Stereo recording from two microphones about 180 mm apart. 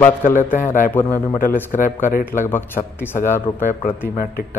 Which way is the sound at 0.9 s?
10° left (ahead or behind).